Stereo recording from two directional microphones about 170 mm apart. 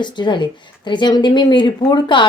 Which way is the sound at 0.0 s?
25° left (ahead or behind).